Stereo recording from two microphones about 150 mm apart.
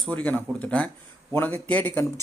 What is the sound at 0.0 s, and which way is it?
A man's voice, 10° left (ahead or behind).